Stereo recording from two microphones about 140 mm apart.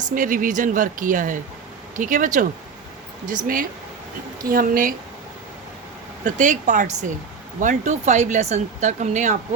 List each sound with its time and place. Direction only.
0.1 s speech: 70° right (ahead or behind)
6.2 s speech: 65° right (ahead or behind)